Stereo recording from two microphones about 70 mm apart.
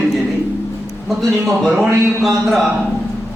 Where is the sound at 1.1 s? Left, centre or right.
Centre.